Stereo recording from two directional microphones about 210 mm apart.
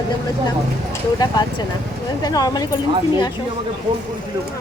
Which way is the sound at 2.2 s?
20° left (ahead or behind).